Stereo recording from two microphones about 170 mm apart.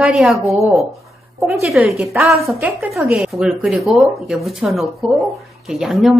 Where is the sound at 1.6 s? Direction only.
Centre (ahead or behind).